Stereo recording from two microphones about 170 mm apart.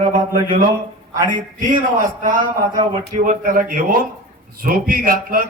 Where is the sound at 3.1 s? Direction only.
50° right (ahead or behind).